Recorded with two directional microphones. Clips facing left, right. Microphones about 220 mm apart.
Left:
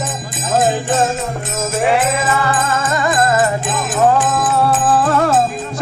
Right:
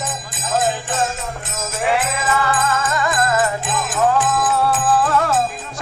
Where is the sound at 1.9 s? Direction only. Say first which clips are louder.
Left 3 dB; 25° left (ahead or behind).